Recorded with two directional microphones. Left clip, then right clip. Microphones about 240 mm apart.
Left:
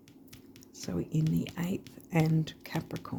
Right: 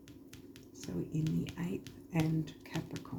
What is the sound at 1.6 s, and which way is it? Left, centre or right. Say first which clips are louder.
Speech: left 4 dB; left.